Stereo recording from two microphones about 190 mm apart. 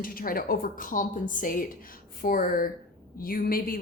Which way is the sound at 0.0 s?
50° left (ahead or behind).